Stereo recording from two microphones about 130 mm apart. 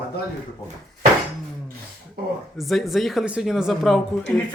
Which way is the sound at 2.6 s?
Centre (ahead or behind).